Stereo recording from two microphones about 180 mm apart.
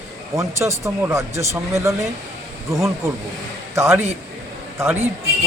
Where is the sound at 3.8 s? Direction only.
15° right (ahead or behind).